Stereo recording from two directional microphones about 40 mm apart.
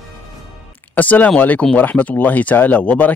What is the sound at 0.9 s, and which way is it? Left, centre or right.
Speech, left.